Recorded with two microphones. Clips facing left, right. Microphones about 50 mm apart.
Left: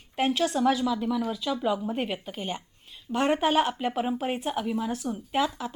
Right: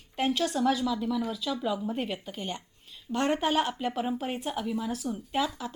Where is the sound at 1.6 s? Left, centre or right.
Left.